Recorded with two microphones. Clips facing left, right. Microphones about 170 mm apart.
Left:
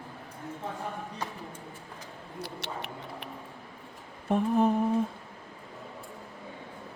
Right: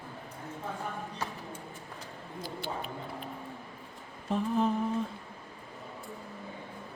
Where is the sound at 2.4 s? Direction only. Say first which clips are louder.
Right 1 dB; 75° left (ahead or behind).